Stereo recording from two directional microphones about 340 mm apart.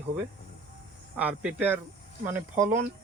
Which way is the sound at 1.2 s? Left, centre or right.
Centre.